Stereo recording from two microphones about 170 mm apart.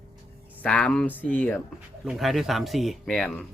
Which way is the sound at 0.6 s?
5° left (ahead or behind).